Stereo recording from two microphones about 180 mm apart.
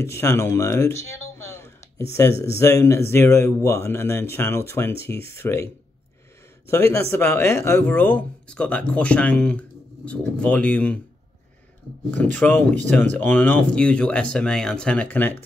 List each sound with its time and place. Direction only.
0.0 s speech: 15° left (ahead or behind)
6.7 s speech: 15° left (ahead or behind)
12.1 s speech: 10° left (ahead or behind)